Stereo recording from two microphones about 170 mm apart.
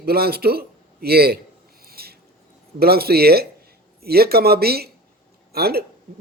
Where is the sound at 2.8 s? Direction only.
65° right (ahead or behind).